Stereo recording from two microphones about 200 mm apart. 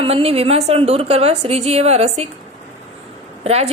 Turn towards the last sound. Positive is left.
turn(degrees=-30)  # may be behind; listen again after turning